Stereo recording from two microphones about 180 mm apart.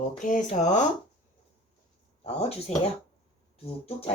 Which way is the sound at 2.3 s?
35° left (ahead or behind).